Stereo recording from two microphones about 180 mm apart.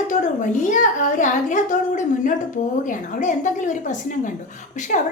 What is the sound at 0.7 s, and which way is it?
A woman's voice, 45° left (ahead or behind).